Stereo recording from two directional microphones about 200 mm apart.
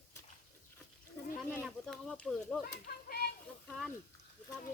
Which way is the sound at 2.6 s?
50° left (ahead or behind).